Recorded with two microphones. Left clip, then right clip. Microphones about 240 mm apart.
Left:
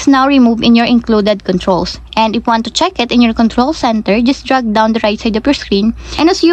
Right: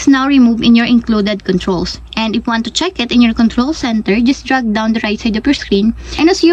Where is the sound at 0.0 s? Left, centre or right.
Centre.